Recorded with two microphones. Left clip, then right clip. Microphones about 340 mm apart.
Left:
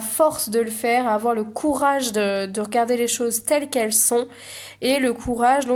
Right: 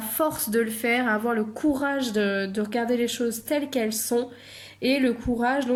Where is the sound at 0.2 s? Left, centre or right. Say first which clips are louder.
Left 6 dB; centre.